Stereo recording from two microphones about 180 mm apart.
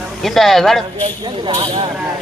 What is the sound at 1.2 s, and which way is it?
Speech, 30° right (ahead or behind).